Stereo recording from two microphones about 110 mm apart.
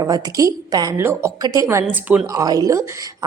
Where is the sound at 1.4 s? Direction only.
30° right (ahead or behind).